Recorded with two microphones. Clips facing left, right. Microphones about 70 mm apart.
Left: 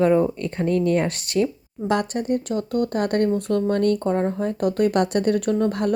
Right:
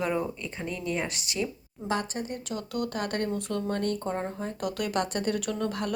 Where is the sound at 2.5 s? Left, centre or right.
Left.